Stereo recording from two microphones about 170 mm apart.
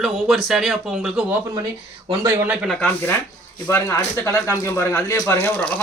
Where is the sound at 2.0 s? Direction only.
15° right (ahead or behind).